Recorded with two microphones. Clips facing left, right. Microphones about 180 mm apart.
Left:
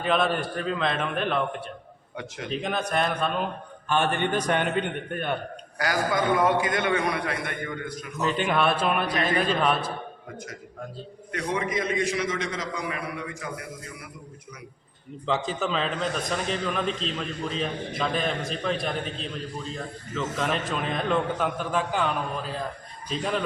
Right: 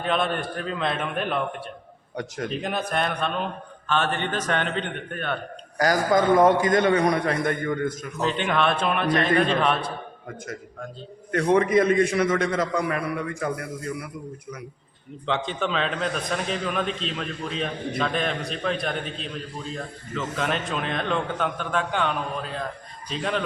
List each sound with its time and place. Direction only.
0.0 s a man's voice: centre (ahead or behind)
2.1 s a man's voice: 45° right (ahead or behind)
2.5 s a man's voice: centre (ahead or behind)
5.7 s a man's voice: 40° right (ahead or behind)
8.4 s a man's voice: 5° left (ahead or behind)
11.3 s a man's voice: 55° right (ahead or behind)
15.3 s a man's voice: 5° left (ahead or behind)